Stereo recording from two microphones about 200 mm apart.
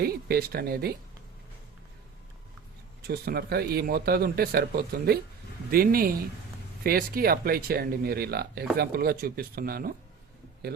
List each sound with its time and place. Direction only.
0.0 s speech: 50° right (ahead or behind)
3.1 s speech: 55° right (ahead or behind)